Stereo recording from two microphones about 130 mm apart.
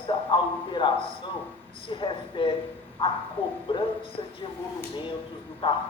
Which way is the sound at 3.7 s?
40° left (ahead or behind).